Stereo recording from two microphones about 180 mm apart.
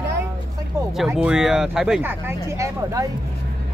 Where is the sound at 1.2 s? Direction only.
5° right (ahead or behind).